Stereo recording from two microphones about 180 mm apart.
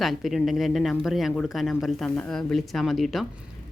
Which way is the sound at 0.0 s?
Centre (ahead or behind).